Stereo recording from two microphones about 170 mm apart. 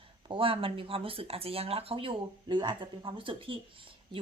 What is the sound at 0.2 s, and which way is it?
Speech, 30° right (ahead or behind).